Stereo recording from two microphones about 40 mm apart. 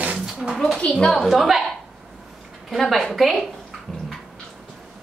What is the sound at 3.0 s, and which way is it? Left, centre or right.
Speech, centre.